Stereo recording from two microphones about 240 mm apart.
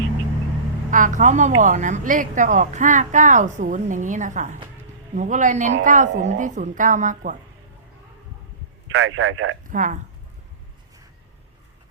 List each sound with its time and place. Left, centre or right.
0.9 s a woman's voice: right
8.9 s a man's voice: right
9.6 s speech: right